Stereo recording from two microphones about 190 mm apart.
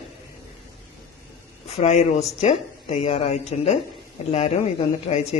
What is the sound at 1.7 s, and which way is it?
Speech, 35° left (ahead or behind).